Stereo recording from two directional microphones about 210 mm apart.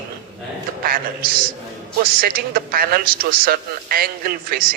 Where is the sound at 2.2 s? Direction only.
45° right (ahead or behind).